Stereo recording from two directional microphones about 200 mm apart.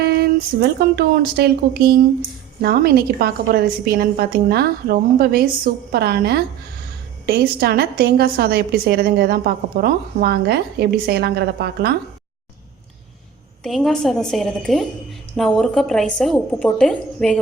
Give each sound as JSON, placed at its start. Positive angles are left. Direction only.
{"t": 0.0, "sound": "a woman's voice", "side_deg": -55}
{"t": 13.6, "sound": "a woman's voice", "side_deg": 0}